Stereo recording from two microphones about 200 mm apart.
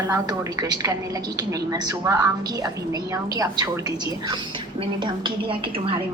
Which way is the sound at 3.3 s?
20° right (ahead or behind).